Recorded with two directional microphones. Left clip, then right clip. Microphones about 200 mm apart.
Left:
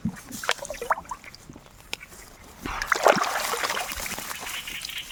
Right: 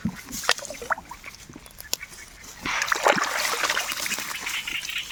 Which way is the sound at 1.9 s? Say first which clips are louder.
Right 4 dB; 5° left (ahead or behind).